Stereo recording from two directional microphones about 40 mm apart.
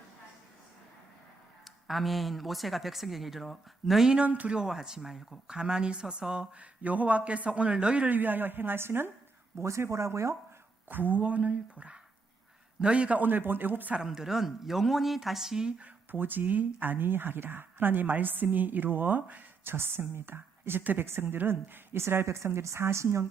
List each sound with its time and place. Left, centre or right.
1.9 s speech: centre
3.9 s speech: centre
4.2 s a man's voice: right
4.5 s speech: centre
5.5 s a woman's voice: centre
6.6 s a man's voice: right
8.0 s a woman's voice: right
10.8 s a man's voice: right
13.1 s speech: right
14.1 s speech: centre
16.1 s speech: right
19.6 s speech: right
20.8 s a woman's voice: right
21.1 s speech: right